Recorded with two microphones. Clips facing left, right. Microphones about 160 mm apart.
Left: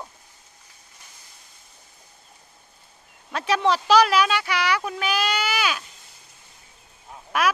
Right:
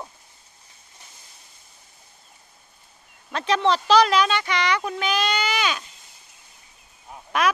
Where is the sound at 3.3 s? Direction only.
10° left (ahead or behind).